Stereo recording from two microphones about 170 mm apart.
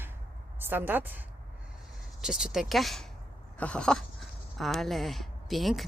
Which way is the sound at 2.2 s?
5° right (ahead or behind).